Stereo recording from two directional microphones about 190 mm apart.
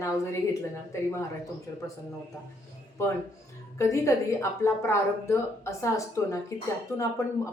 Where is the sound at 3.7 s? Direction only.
15° left (ahead or behind).